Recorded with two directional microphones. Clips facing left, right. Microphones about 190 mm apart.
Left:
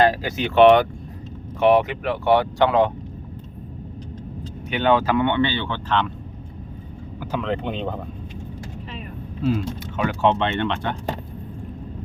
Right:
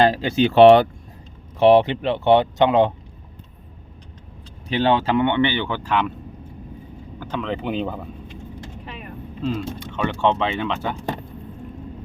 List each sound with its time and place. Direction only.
0.0 s speech: 30° right (ahead or behind)
4.7 s speech: 30° right (ahead or behind); by 6.1 s 10° right (ahead or behind)
7.2 s speech: 5° left (ahead or behind)
9.5 s speech: 5° left (ahead or behind)